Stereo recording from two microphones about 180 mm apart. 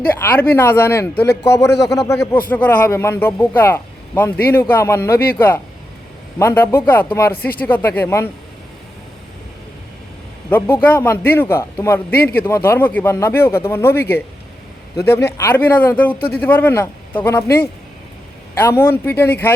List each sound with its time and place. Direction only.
0.2 s speech: 10° left (ahead or behind)
6.4 s speech: 15° left (ahead or behind)
10.5 s speech: 10° left (ahead or behind)